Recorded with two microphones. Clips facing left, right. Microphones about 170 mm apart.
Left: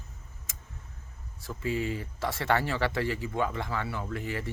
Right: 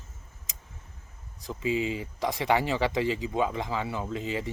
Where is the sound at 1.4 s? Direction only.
15° right (ahead or behind).